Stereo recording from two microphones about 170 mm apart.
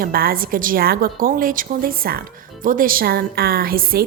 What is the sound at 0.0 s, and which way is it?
A woman's voice, 60° right (ahead or behind).